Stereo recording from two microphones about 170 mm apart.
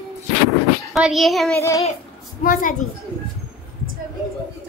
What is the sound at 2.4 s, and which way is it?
Speech, 50° left (ahead or behind).